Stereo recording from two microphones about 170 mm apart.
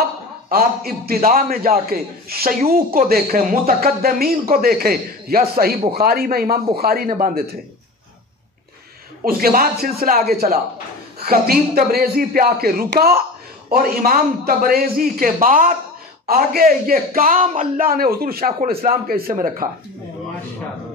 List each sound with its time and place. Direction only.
0.5 s speech: 60° right (ahead or behind)
9.2 s speech: 60° right (ahead or behind)